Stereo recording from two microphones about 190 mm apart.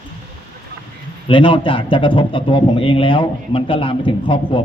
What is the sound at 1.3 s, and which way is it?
A man's voice, 25° left (ahead or behind).